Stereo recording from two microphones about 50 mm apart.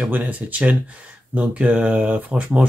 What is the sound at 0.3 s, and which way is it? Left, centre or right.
Speech, right.